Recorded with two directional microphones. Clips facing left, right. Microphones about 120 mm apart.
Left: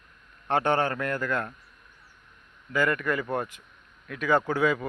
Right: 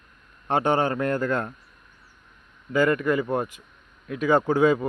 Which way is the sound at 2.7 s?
25° right (ahead or behind).